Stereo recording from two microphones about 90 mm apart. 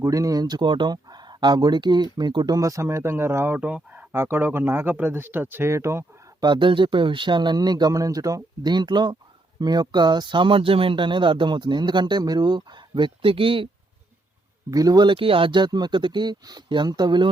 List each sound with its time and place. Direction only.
0.0 s speech: 40° right (ahead or behind); by 2.6 s 55° right (ahead or behind)
2.6 s speech: 35° right (ahead or behind)
6.4 s speech: 60° right (ahead or behind); by 8.7 s 40° right (ahead or behind)
8.7 s speech: 55° right (ahead or behind); by 13.7 s 75° right (ahead or behind)
14.7 s speech: 45° right (ahead or behind)
15.0 s speech: 75° right (ahead or behind); by 17.2 s 55° right (ahead or behind)